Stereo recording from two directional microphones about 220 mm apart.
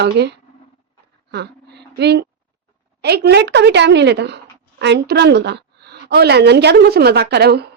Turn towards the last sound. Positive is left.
turn(degrees=-45)  # may be behind; listen again after turning